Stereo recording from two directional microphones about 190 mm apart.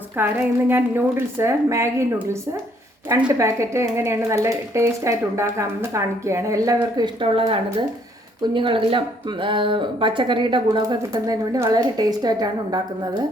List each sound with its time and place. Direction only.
0.2 s speech: 10° right (ahead or behind)
3.2 s speech: 15° right (ahead or behind)